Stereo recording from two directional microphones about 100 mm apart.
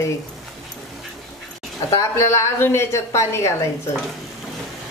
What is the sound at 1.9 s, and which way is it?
Speech, 30° left (ahead or behind).